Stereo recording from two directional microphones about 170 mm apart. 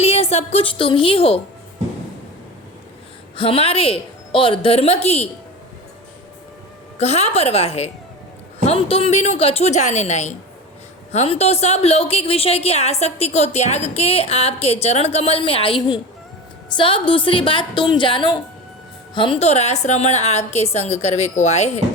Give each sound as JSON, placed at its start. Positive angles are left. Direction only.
{"t": 0.0, "sound": "a woman's voice", "side_deg": 40}
{"t": 3.3, "sound": "a woman's voice", "side_deg": 35}
{"t": 7.0, "sound": "a woman's voice", "side_deg": 40}